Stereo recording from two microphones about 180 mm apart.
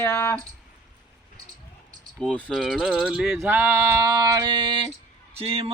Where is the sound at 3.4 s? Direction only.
10° right (ahead or behind); by 4.9 s 25° right (ahead or behind).